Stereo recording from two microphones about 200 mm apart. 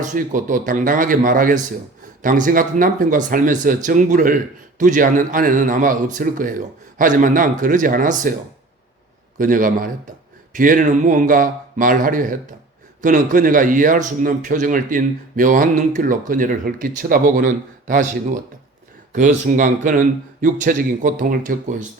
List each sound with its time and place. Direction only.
0.0 s a man's voice: 40° right (ahead or behind)
9.4 s a man's voice: 40° right (ahead or behind)